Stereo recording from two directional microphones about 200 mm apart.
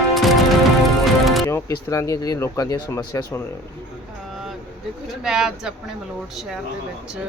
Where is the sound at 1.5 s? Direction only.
15° left (ahead or behind).